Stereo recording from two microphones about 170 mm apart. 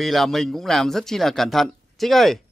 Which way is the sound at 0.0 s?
Centre (ahead or behind).